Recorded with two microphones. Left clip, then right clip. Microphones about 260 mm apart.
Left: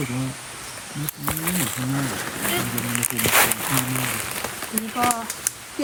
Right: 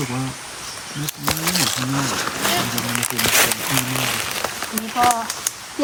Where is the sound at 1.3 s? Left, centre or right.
Right.